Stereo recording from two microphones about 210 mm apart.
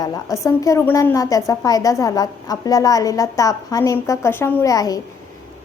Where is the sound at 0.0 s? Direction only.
15° left (ahead or behind).